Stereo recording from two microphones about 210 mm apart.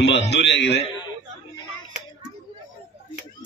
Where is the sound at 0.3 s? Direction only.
55° left (ahead or behind).